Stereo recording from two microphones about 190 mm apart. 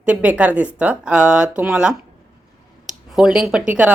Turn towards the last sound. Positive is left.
turn(degrees=-10)  # may be behind; listen again after turning